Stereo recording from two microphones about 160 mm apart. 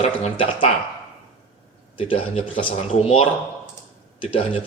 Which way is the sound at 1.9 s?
35° left (ahead or behind).